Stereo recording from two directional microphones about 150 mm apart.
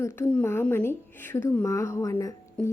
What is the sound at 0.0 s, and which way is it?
A woman's voice, 10° left (ahead or behind).